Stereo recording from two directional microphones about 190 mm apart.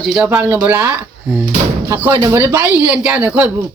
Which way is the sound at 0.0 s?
Centre (ahead or behind).